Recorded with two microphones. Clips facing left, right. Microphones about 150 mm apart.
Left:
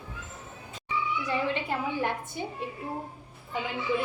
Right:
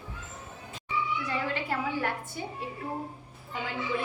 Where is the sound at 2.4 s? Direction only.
20° left (ahead or behind).